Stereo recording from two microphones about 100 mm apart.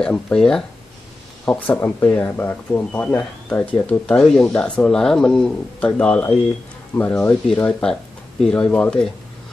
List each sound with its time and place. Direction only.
0.0 s speech: 10° left (ahead or behind)
1.4 s speech: 15° left (ahead or behind)